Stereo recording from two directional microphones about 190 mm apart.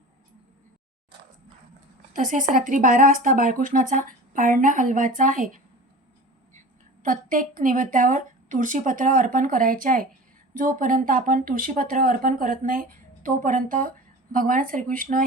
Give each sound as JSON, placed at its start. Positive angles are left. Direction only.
{"t": 2.1, "sound": "speech", "side_deg": -40}
{"t": 7.0, "sound": "speech", "side_deg": -45}